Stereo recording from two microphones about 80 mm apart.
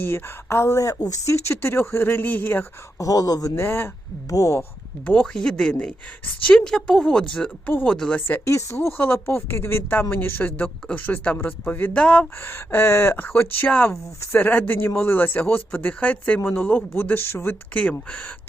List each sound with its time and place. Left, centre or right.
0.0 s speech: left
3.0 s speech: left
3.5 s speech: left
4.3 s speech: left
5.0 s speech: centre
5.3 s a woman's voice: centre
8.4 s speech: left; by 12.3 s centre
12.4 s speech: left